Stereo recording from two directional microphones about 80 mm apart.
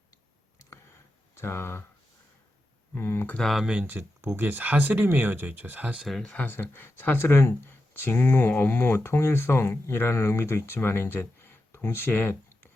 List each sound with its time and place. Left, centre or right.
1.4 s speech: left
2.9 s speech: left
3.3 s speech: centre
3.6 s speech: centre
3.8 s speech: right
6.2 s speech: centre